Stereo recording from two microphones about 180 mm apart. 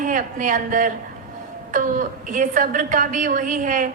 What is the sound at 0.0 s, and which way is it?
A woman's voice, 45° right (ahead or behind).